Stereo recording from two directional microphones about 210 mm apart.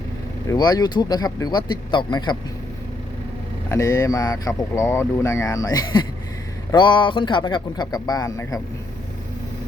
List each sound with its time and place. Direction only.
0.5 s speech: 20° left (ahead or behind)
3.7 s speech: 15° left (ahead or behind)